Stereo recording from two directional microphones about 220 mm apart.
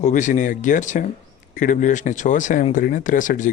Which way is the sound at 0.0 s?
35° left (ahead or behind).